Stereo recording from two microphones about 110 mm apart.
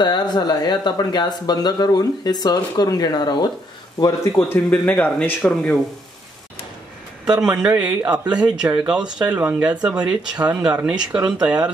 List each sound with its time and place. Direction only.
0.0 s speech: 40° left (ahead or behind)
4.6 s speech: 15° left (ahead or behind)
7.3 s speech: 10° right (ahead or behind)